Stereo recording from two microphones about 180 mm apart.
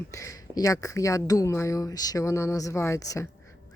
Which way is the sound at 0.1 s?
15° left (ahead or behind).